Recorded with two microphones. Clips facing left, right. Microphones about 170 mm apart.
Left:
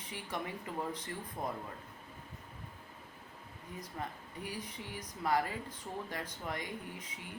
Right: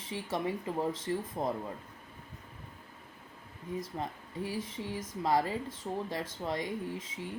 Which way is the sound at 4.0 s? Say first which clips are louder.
Right 5 dB; 25° right (ahead or behind).